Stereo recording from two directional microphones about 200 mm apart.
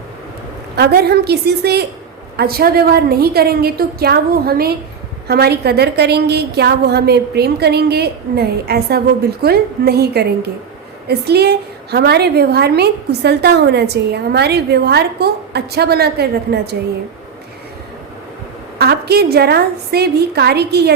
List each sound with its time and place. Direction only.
0.8 s a woman's voice: 50° right (ahead or behind)
18.8 s a woman's voice: 55° right (ahead or behind)